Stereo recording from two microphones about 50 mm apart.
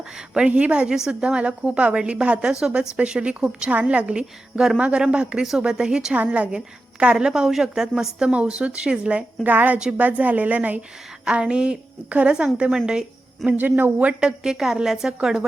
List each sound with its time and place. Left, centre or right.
0.0 s speech: centre
0.9 s a woman's voice: centre
8.3 s a woman's voice: right
11.3 s a woman's voice: centre
13.6 s a woman's voice: right
14.0 s a woman's voice: right